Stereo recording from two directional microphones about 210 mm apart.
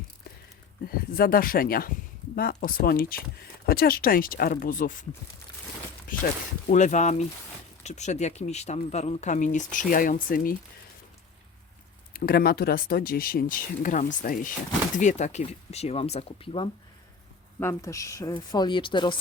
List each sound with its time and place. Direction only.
0.9 s speech: 45° left (ahead or behind)
6.1 s speech: 40° left (ahead or behind)
12.1 s speech: 45° left (ahead or behind); by 16.6 s 25° left (ahead or behind)
17.6 s speech: 15° left (ahead or behind)